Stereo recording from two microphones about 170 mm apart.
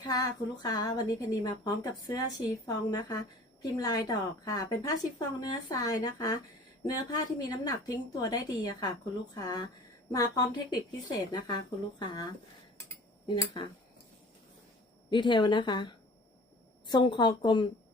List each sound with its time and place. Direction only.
0.0 s a woman's voice: 25° left (ahead or behind)
15.1 s a woman's voice: 25° left (ahead or behind)